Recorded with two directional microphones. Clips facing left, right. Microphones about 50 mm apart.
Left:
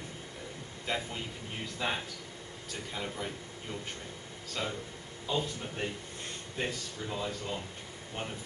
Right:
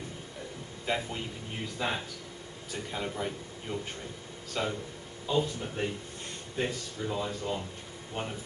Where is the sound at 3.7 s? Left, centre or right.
Centre.